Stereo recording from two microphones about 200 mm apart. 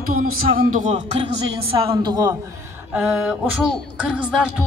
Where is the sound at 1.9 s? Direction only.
20° right (ahead or behind).